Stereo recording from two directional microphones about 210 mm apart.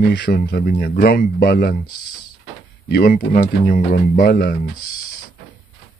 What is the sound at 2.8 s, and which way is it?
Speech, 45° left (ahead or behind).